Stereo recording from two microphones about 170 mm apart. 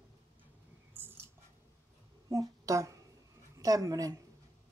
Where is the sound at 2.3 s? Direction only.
20° right (ahead or behind).